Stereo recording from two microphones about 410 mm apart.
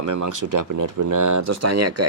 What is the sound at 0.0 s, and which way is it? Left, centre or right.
Speech, right.